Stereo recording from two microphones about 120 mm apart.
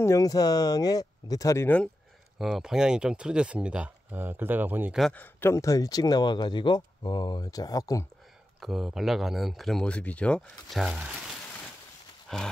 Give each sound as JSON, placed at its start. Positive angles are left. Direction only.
{"t": 0.0, "sound": "speech", "side_deg": 25}
{"t": 2.3, "sound": "speech", "side_deg": -5}
{"t": 5.1, "sound": "speech", "side_deg": 15}
{"t": 8.5, "sound": "speech", "side_deg": 0}
{"t": 10.8, "sound": "speech", "side_deg": -10}
{"t": 12.3, "sound": "horse", "side_deg": 5}